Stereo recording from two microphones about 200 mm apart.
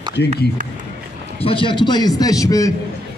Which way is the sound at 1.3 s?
25° left (ahead or behind).